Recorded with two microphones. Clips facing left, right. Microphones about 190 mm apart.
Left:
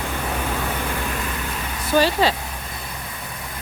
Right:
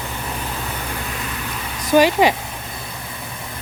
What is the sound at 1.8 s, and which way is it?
Speech, 15° right (ahead or behind).